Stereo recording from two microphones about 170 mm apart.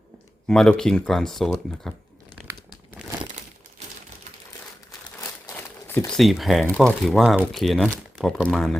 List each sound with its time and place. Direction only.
0.4 s speech: 5° left (ahead or behind)
2.5 s crumpling: 15° right (ahead or behind)
5.9 s a sound: 10° left (ahead or behind)
6.1 s speech: centre (ahead or behind)